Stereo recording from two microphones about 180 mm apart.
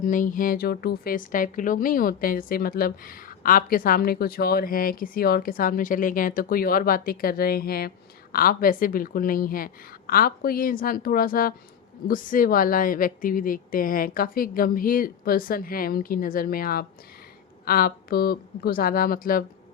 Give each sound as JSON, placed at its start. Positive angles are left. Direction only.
{"t": 0.0, "sound": "speech", "side_deg": 45}